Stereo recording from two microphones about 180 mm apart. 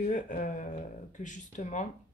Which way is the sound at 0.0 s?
45° left (ahead or behind).